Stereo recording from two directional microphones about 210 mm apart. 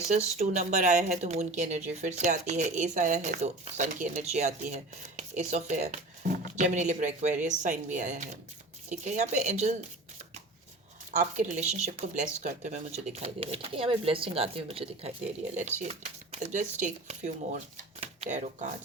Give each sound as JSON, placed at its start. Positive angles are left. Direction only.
{"t": 0.3, "sound": "speech", "side_deg": -35}
{"t": 11.2, "sound": "speech", "side_deg": -35}